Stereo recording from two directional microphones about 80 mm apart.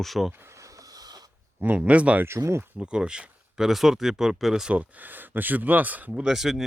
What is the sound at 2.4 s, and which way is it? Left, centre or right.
Speech, right.